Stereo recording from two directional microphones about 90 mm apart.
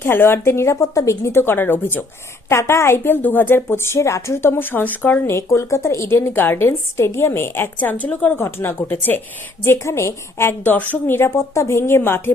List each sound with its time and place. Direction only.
0.0 s a woman's voice: 25° left (ahead or behind)
5.4 s a woman's voice: 35° left (ahead or behind)